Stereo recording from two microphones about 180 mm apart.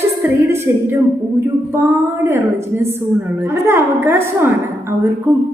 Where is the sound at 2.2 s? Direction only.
15° right (ahead or behind).